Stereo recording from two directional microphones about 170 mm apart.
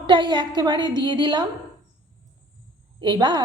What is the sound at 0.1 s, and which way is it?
A woman's voice, 25° right (ahead or behind).